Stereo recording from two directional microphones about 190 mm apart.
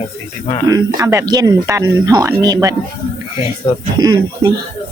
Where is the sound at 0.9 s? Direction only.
15° right (ahead or behind).